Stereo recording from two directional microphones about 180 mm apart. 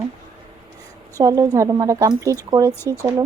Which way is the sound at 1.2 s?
15° right (ahead or behind).